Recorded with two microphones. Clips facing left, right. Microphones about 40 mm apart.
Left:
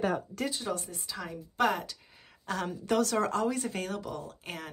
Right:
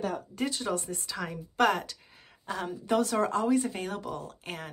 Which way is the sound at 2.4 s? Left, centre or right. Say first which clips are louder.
Left 1 dB; centre.